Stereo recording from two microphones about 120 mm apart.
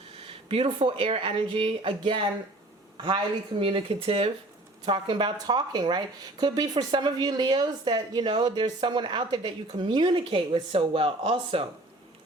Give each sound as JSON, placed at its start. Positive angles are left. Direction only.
{"t": 0.1, "sound": "speech", "side_deg": -50}
{"t": 3.6, "sound": "speech", "side_deg": -50}
{"t": 4.9, "sound": "speech", "side_deg": -40}